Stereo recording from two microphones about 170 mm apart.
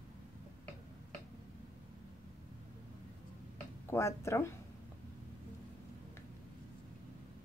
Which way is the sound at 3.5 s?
15° left (ahead or behind).